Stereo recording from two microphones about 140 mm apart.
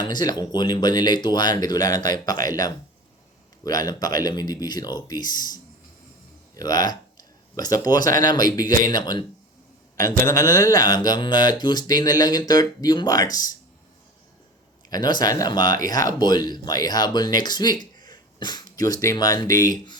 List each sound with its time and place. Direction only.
0.0 s speech: 30° left (ahead or behind)
10.2 s speech: 25° left (ahead or behind)
14.8 s speech: 30° left (ahead or behind)